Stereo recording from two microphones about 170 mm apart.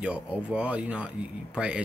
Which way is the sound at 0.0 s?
5° right (ahead or behind).